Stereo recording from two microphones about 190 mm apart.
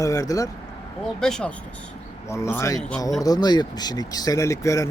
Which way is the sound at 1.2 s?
5° left (ahead or behind).